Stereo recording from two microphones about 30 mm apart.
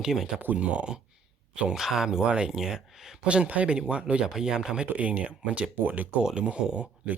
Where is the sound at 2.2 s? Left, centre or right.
Right.